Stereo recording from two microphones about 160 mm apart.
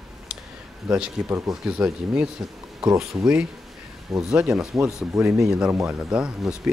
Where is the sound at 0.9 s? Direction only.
10° right (ahead or behind).